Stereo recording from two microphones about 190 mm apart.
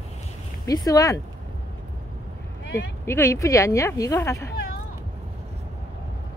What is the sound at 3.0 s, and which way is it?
Speech, 15° left (ahead or behind).